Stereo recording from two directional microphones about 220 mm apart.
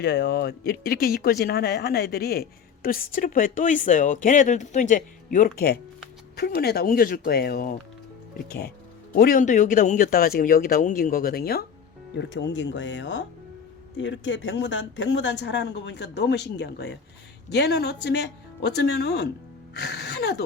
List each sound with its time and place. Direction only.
0.0 s speech: 50° left (ahead or behind)
9.1 s speech: 40° left (ahead or behind)
19.7 s music: 50° left (ahead or behind)